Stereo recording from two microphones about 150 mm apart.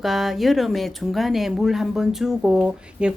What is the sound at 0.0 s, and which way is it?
Speech, centre (ahead or behind).